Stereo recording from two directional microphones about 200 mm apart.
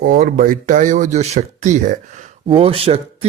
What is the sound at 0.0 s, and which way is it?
Speech, 45° right (ahead or behind).